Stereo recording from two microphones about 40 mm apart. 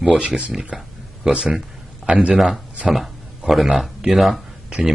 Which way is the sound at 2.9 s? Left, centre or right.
Centre.